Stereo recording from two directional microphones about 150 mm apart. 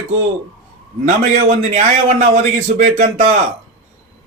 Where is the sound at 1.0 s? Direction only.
55° right (ahead or behind).